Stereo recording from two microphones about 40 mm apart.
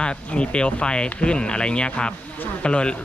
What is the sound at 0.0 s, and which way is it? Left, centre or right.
Speech, left.